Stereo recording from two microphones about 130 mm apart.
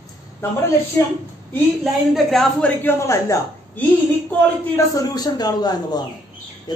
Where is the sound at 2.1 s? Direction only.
Centre (ahead or behind).